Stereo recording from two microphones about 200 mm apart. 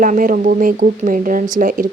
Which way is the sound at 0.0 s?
40° right (ahead or behind).